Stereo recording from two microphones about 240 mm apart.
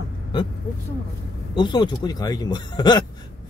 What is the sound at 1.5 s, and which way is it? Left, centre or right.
Speech, centre.